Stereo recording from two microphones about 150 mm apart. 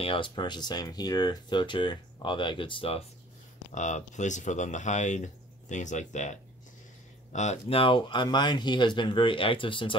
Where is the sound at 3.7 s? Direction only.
55° left (ahead or behind).